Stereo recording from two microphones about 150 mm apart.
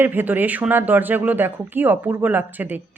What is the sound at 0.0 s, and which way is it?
Speech, 15° right (ahead or behind).